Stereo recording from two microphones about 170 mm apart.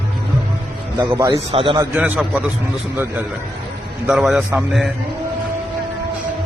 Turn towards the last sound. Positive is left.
turn(degrees=0)  # may be behind; listen again after turning